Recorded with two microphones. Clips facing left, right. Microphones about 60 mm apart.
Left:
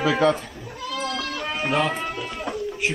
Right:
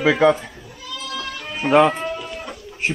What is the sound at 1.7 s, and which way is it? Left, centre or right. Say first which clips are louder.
Speech: right 9 dB; right.